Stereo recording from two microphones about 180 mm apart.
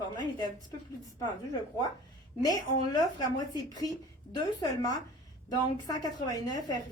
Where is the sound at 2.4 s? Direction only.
20° left (ahead or behind).